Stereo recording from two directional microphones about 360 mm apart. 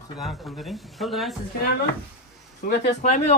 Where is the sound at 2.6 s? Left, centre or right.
Left.